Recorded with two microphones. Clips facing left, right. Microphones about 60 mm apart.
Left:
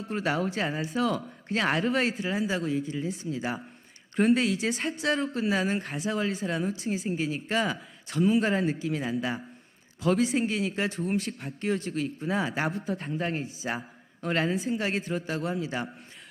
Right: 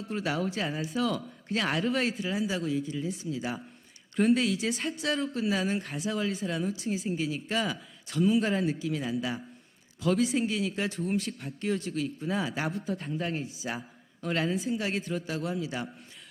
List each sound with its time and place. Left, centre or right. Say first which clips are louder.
0.0 s a man's voice: left 2 dB; left
1.9 s a man's voice: left 2 dB; left
4.2 s speech: left 1 dB; left
7.7 s speech: left 2 dB; left
8.6 s a man's voice: left 1 dB; left
10.0 s speech: left 2 dB; left
10.4 s speech: left 2 dB; left
12.2 s a man's voice: left 3 dB; left
12.8 s a man's voice: left 2 dB; left
14.9 s speech: left 2 dB; left
15.3 s a man's voice: left 2 dB; left